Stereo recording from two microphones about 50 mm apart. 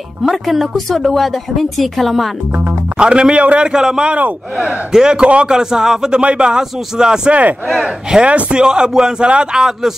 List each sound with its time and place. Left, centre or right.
0.2 s speech: centre
3.0 s a man's voice: centre